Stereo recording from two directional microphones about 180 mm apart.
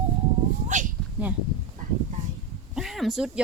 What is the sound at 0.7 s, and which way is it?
Speech, 40° right (ahead or behind).